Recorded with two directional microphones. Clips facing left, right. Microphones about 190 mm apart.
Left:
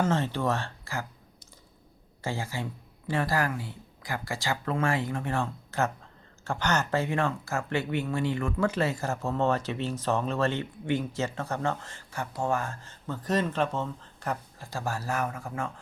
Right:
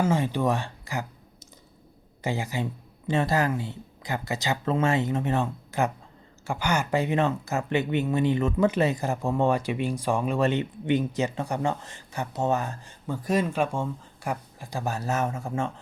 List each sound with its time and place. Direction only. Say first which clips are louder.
0.0 s speech: right 3 dB; 10° right (ahead or behind)